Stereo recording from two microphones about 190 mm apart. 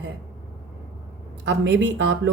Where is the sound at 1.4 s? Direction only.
70° right (ahead or behind).